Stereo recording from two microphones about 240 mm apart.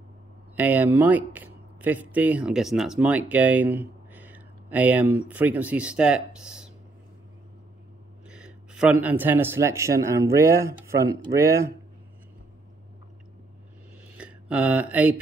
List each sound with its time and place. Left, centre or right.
0.6 s speech: centre
8.3 s a man's voice: centre
14.1 s a sound: centre